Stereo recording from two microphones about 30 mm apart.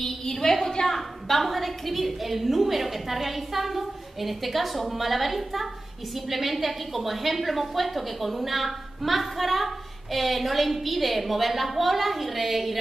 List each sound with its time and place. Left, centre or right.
0.0 s a woman's voice: centre